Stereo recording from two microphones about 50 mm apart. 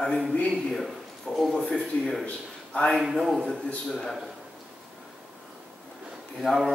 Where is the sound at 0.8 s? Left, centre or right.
Centre.